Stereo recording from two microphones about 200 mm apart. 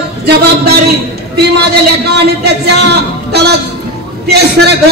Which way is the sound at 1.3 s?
55° right (ahead or behind).